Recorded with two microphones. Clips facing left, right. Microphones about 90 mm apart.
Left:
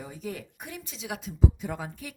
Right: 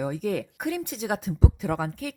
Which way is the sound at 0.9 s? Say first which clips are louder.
Right 8 dB; 50° right (ahead or behind).